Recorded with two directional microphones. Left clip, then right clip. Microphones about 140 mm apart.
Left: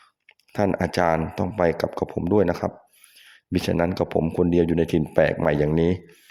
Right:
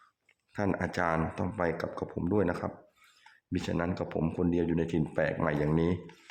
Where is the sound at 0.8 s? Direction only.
45° left (ahead or behind).